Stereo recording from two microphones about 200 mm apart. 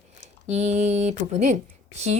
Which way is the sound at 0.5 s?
35° right (ahead or behind).